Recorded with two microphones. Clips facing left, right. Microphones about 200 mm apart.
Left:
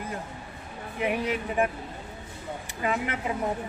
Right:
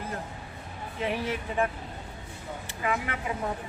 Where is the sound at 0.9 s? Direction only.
15° left (ahead or behind).